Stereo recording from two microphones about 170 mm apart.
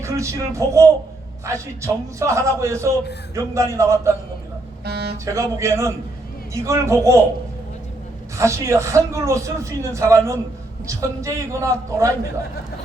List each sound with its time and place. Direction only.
0.0 s a man's voice: 15° right (ahead or behind)
4.9 s a sound: 70° right (ahead or behind)
5.1 s a man's voice: 20° right (ahead or behind)
8.4 s a man's voice: 15° right (ahead or behind)